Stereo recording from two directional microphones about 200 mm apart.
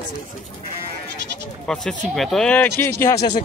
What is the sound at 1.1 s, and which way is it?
Bleat, 60° right (ahead or behind).